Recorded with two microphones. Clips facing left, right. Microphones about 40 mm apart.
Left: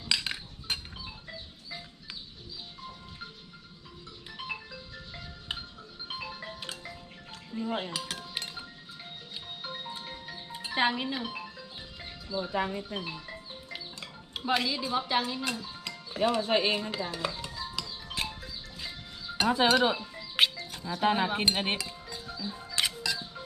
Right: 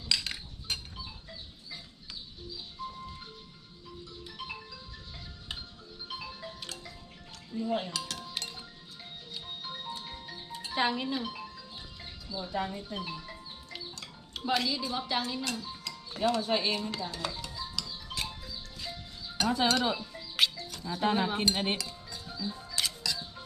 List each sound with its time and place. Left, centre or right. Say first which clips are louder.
0.0 s cutlery: left 2 dB; centre
5.5 s music: left 4 dB; left
7.5 s chink: right 1 dB; left
9.3 s music: even; left
11.9 s speech: left 6 dB; left
13.7 s music: left 1 dB; centre
16.4 s speech: left 3 dB; left
16.9 s music: left 3 dB; centre
19.4 s music: left 4 dB; left